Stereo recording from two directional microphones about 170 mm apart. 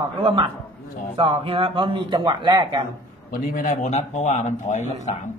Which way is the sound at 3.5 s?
50° left (ahead or behind).